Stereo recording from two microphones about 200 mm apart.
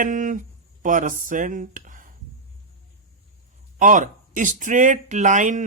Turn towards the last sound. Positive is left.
turn(degrees=-40)  # may be behind; listen again after turning